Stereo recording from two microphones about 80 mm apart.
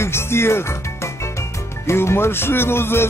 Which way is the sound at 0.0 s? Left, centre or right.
Left.